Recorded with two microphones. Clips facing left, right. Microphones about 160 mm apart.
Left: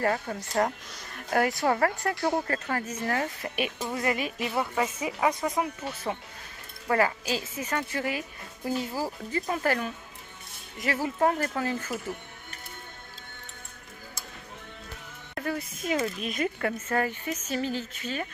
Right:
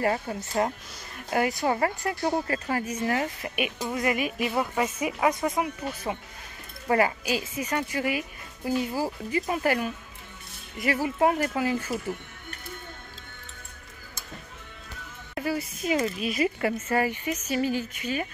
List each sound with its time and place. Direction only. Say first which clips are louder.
0.0 s speech: right 1 dB; 10° right (ahead or behind)
15.3 s speech: right 3 dB; 5° right (ahead or behind)